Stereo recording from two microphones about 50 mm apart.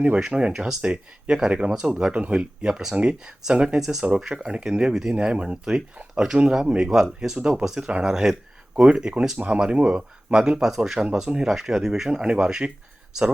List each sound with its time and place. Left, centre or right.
0.3 s speech: centre
3.8 s speech: centre